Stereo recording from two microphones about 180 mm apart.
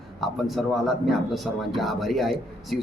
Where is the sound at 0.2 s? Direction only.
Centre (ahead or behind).